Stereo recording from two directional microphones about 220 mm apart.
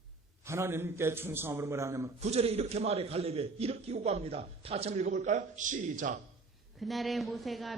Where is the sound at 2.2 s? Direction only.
30° right (ahead or behind).